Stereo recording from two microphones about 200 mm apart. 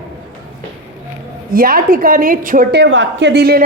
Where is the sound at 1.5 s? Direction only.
45° right (ahead or behind).